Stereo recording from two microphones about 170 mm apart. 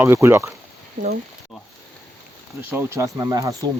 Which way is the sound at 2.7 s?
15° right (ahead or behind).